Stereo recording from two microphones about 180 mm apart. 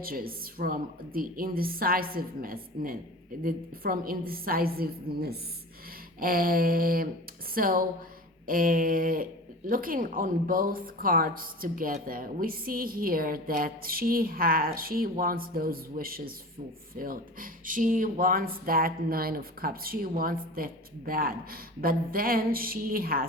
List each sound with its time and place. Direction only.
0.0 s a woman's voice: 55° right (ahead or behind)